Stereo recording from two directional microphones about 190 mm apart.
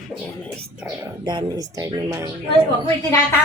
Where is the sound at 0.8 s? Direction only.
20° right (ahead or behind).